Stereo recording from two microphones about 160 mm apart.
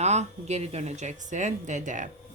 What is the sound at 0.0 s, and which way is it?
A woman's voice, 45° right (ahead or behind).